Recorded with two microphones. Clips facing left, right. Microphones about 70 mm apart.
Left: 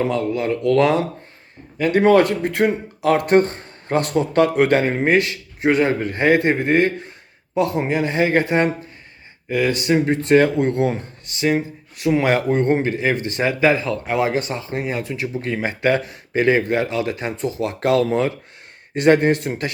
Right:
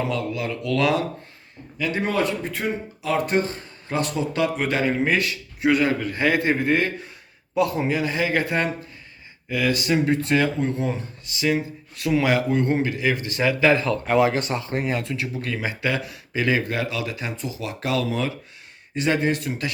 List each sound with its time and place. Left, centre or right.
0.0 s speech: left
1.9 s speech: left
9.5 s speech: left
11.3 s speech: left
13.7 s speech: centre
14.2 s speech: centre
15.8 s speech: left